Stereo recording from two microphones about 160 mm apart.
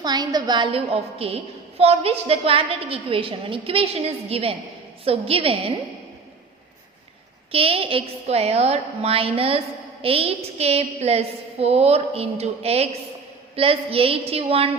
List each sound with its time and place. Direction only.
0.0 s a woman's voice: 25° right (ahead or behind)
7.5 s a woman's voice: 35° right (ahead or behind)